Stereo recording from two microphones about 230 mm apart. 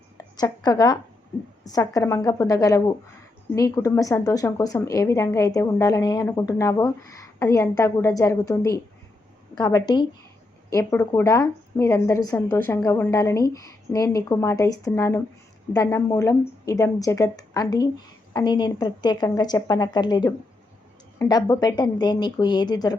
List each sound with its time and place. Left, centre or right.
0.2 s speech: centre